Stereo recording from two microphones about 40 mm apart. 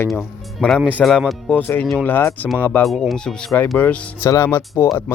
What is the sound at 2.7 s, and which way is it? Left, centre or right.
Speech, left.